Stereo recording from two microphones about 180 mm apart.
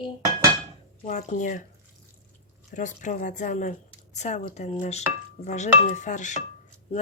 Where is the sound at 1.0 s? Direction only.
45° left (ahead or behind).